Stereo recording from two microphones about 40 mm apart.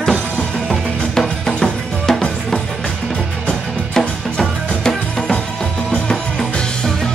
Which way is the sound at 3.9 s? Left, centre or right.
Centre.